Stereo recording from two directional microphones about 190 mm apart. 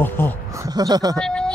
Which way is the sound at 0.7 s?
20° right (ahead or behind).